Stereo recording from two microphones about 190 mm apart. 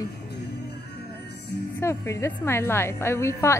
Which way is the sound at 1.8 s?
15° left (ahead or behind).